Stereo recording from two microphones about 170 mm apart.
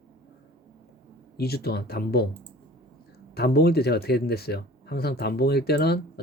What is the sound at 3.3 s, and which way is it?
Speech, 70° left (ahead or behind).